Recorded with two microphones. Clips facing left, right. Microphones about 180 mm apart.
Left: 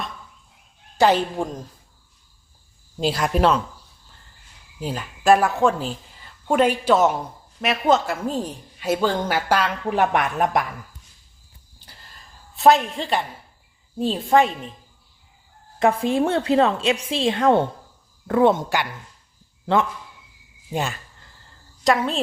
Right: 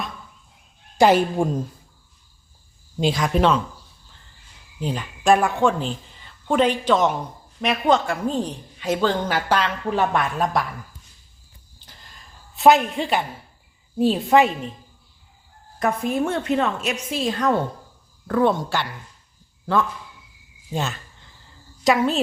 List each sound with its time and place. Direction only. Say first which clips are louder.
0.9 s a woman's voice: right 2 dB; 15° right (ahead or behind)
3.0 s speech: even; 5° left (ahead or behind)
4.8 s a woman's voice: right 1 dB; 5° left (ahead or behind)
12.5 s speech: right 1 dB; centre (ahead or behind)
15.8 s a woman's voice: left 3 dB; 30° left (ahead or behind)
20.7 s a woman's voice: left 1 dB; 10° left (ahead or behind)
21.8 s speech: right 1 dB; centre (ahead or behind)